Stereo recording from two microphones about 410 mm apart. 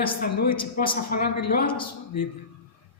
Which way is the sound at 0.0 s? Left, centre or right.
Left.